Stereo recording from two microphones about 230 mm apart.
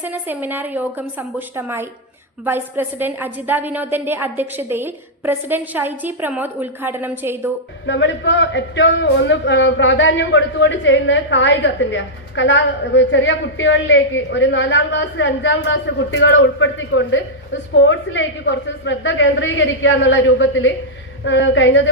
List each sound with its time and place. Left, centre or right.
0.0 s a woman's voice: centre
7.9 s speech: left